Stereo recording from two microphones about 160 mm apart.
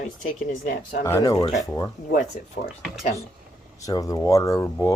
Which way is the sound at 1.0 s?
20° left (ahead or behind).